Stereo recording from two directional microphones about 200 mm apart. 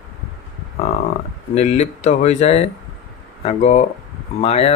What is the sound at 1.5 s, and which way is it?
Speech, 35° left (ahead or behind).